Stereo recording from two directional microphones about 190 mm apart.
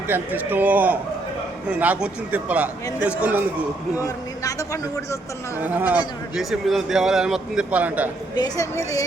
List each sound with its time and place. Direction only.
0.1 s a man's voice: 10° right (ahead or behind)
3.9 s a man's voice: 15° left (ahead or behind)
5.5 s a man's voice: 10° right (ahead or behind)
8.4 s a man's voice: 15° left (ahead or behind)